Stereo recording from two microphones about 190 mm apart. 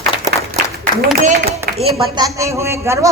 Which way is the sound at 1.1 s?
50° right (ahead or behind).